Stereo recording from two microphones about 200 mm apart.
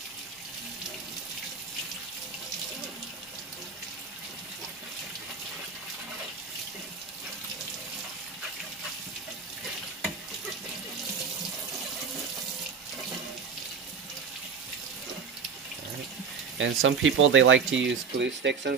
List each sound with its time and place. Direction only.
16.5 s speech: 75° right (ahead or behind); by 18.8 s 60° right (ahead or behind)